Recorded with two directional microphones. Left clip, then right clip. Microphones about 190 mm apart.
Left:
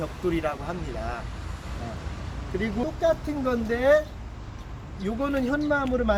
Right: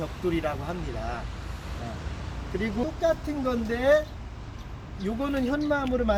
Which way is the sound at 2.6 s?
15° right (ahead or behind).